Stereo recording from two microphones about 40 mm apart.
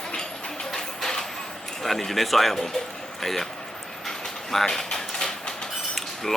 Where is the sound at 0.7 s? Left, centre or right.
Centre.